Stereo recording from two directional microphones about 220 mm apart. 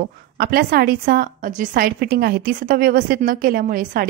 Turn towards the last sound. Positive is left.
turn(degrees=-40)  # may be behind; listen again after turning